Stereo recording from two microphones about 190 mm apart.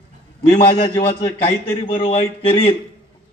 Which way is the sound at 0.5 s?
25° left (ahead or behind).